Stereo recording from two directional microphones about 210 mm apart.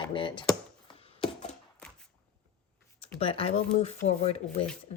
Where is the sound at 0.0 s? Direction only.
25° left (ahead or behind).